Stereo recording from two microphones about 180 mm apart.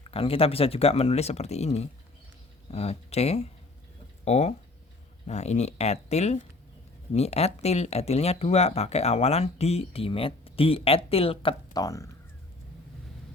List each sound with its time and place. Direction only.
0.0 s speech: 30° left (ahead or behind)